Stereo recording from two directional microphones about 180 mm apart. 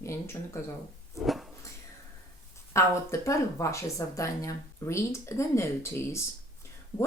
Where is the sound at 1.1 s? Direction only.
Centre (ahead or behind).